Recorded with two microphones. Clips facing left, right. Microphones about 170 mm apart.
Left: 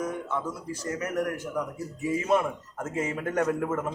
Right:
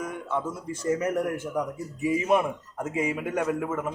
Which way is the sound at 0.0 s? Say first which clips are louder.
Even; 15° right (ahead or behind).